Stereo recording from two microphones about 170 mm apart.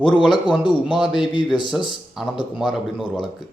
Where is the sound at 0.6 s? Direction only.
25° left (ahead or behind).